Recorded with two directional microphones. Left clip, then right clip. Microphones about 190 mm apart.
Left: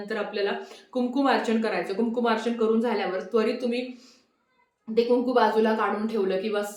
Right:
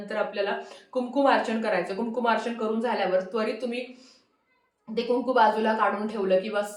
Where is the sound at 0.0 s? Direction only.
15° left (ahead or behind).